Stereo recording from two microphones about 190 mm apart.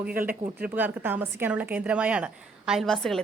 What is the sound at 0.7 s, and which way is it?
Speech, 10° right (ahead or behind).